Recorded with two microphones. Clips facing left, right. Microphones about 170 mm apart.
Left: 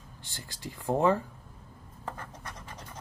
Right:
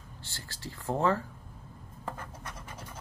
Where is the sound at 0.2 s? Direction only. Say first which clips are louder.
Left 2 dB; 15° left (ahead or behind).